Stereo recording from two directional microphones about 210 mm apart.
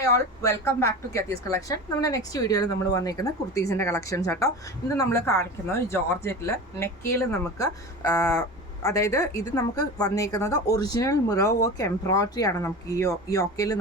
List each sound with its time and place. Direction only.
0.0 s a woman's voice: 15° left (ahead or behind)